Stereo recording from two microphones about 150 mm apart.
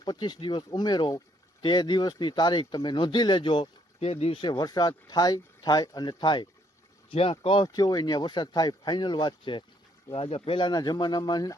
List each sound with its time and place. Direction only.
0.0 s speech: 30° left (ahead or behind)